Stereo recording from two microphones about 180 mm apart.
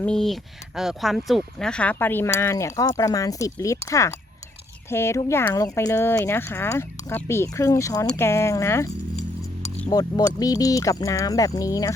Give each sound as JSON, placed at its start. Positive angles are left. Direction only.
{"t": 0.0, "sound": "speech", "side_deg": 5}
{"t": 9.9, "sound": "speech", "side_deg": 20}